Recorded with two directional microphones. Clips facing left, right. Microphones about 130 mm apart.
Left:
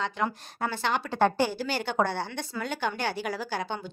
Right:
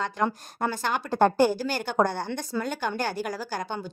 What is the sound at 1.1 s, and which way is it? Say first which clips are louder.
Speech: right 6 dB; 45° right (ahead or behind).